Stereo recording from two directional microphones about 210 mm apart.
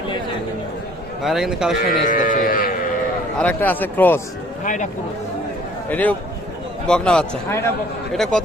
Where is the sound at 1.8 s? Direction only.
40° left (ahead or behind).